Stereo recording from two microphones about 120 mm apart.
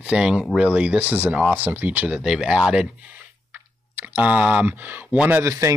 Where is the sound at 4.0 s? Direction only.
15° right (ahead or behind).